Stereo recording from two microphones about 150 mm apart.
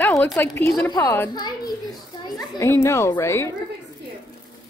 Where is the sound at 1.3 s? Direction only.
25° left (ahead or behind).